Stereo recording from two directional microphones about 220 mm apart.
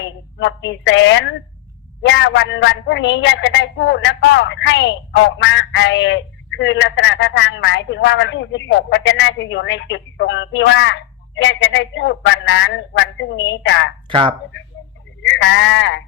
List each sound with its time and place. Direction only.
0.0 s speech: 55° left (ahead or behind)
14.1 s speech: 20° right (ahead or behind)
15.2 s speech: 55° left (ahead or behind)